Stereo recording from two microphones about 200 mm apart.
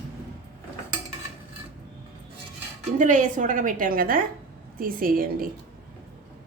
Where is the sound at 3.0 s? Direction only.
40° right (ahead or behind).